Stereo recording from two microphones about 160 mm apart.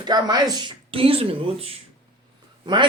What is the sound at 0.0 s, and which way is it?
A woman's voice, 25° right (ahead or behind).